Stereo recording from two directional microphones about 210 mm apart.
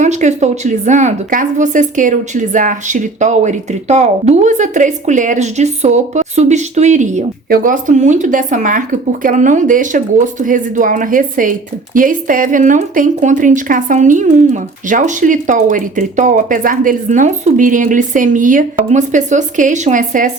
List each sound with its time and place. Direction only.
0.0 s speech: 35° right (ahead or behind)